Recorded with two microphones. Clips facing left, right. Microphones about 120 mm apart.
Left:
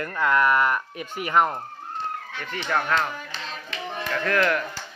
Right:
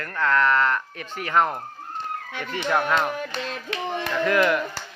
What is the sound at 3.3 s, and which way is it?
Music, 55° right (ahead or behind).